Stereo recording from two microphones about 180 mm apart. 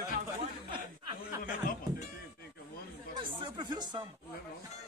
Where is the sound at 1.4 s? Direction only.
50° left (ahead or behind).